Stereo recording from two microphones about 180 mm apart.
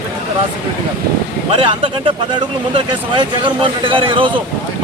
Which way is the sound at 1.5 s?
30° right (ahead or behind).